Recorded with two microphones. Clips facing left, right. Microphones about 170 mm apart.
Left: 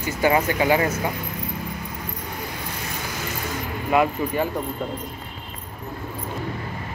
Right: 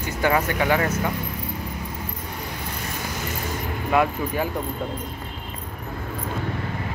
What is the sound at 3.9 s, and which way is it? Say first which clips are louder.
Speech: left 1 dB; 5° right (ahead or behind).